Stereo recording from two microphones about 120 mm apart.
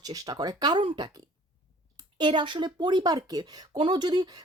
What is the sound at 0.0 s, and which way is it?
Speech, 30° right (ahead or behind).